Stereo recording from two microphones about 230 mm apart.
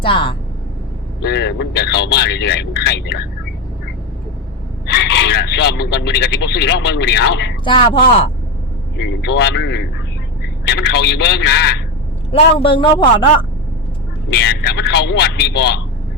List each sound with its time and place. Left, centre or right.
0.0 s a man's voice: left
1.2 s speech: left
4.9 s speech: left
7.6 s a man's voice: left
9.0 s speech: left
12.3 s a man's voice: left
14.3 s speech: left